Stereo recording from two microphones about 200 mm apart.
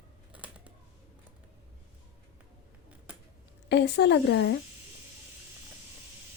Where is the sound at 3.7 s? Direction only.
55° left (ahead or behind).